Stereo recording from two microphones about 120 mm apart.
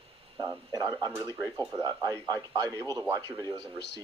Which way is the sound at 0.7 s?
30° right (ahead or behind).